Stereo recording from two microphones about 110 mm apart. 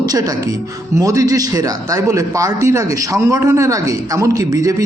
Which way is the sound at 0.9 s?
30° right (ahead or behind).